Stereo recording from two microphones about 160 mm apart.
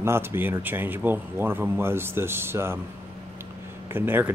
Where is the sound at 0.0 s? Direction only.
15° right (ahead or behind).